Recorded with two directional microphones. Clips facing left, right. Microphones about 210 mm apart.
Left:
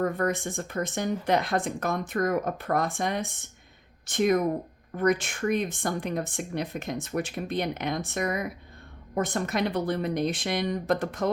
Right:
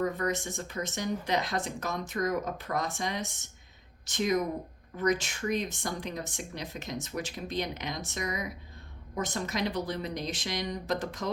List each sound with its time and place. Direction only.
0.0 s speech: 55° left (ahead or behind)